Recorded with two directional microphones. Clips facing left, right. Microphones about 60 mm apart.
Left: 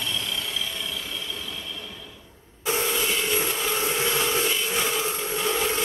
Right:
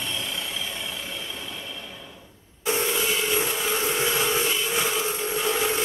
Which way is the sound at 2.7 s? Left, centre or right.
Centre.